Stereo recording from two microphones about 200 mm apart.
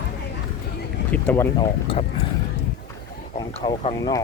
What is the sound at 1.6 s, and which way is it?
Speech, 25° left (ahead or behind).